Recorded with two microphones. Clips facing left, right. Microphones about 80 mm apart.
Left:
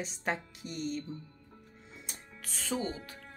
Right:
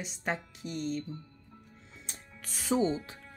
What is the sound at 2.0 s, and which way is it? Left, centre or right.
Music, centre.